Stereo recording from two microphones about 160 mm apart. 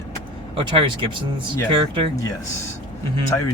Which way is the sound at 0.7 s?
30° right (ahead or behind).